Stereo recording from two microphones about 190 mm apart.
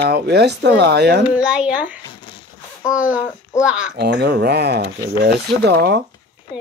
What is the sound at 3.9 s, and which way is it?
Speech, 60° right (ahead or behind).